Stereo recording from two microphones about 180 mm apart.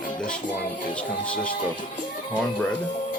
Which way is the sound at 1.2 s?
5° left (ahead or behind).